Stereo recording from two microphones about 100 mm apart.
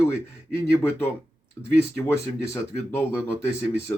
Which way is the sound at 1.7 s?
25° left (ahead or behind).